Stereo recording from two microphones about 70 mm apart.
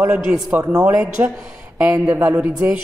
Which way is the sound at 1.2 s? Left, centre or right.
Right.